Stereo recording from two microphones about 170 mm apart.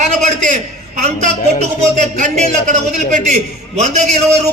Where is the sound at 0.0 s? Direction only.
45° right (ahead or behind).